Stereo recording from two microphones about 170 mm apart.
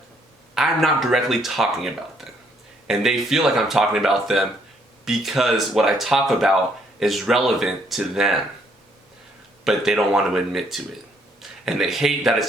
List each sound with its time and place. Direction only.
0.5 s speech: centre (ahead or behind)
9.6 s speech: 5° right (ahead or behind)